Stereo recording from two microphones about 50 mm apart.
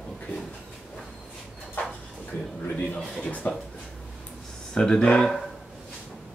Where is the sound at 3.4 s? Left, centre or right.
Left.